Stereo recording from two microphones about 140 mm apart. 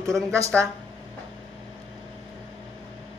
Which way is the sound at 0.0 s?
20° right (ahead or behind).